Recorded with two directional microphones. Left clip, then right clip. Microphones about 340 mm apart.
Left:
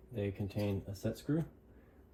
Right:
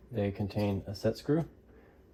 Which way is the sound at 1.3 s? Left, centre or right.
Centre.